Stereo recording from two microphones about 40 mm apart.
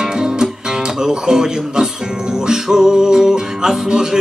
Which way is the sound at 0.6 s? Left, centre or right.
Centre.